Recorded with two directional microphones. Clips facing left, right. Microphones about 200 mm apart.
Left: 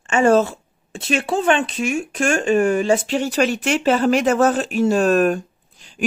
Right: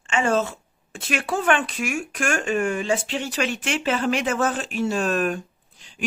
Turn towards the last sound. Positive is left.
turn(degrees=45)  # may be behind; listen again after turning